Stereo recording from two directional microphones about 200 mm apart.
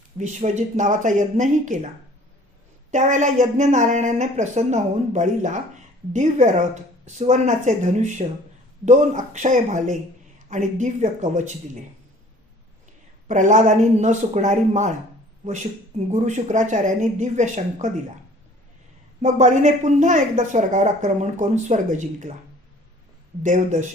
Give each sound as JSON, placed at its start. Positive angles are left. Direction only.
{"t": 0.2, "sound": "speech", "side_deg": -35}
{"t": 2.9, "sound": "speech", "side_deg": -40}
{"t": 13.2, "sound": "speech", "side_deg": -40}
{"t": 16.0, "sound": "speech", "side_deg": -35}
{"t": 19.2, "sound": "speech", "side_deg": -35}
{"t": 23.4, "sound": "speech", "side_deg": -40}